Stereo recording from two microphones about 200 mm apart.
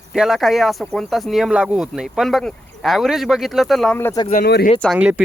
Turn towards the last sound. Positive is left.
turn(degrees=-5)  # may be behind; listen again after turning